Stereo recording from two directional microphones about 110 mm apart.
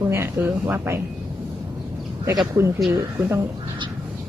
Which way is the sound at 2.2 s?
30° right (ahead or behind).